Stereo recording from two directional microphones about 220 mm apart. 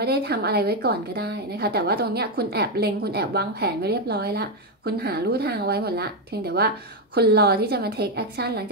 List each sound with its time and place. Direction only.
0.0 s a woman's voice: 45° right (ahead or behind)